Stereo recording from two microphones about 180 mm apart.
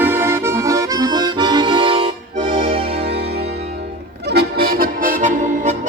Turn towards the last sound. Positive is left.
turn(degrees=-45)  # may be behind; listen again after turning